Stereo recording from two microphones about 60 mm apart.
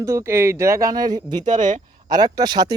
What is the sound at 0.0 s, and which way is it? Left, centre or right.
Speech, right.